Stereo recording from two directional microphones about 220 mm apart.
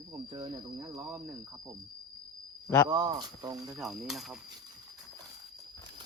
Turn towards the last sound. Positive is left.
turn(degrees=0)  # may be behind; listen again after turning